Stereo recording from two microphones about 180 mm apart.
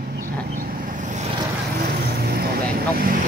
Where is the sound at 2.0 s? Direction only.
55° right (ahead or behind).